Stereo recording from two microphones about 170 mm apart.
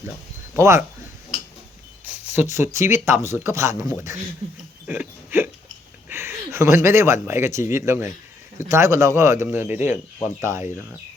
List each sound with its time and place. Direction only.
0.5 s speech: 15° right (ahead or behind)
2.3 s speech: 15° right (ahead or behind)
4.9 s a sound: 10° right (ahead or behind)
6.1 s speech: 15° right (ahead or behind)